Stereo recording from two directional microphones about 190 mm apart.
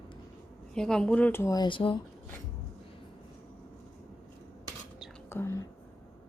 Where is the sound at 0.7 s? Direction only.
5° left (ahead or behind); by 1.9 s 25° left (ahead or behind).